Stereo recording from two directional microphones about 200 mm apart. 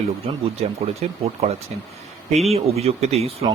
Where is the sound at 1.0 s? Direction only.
30° right (ahead or behind).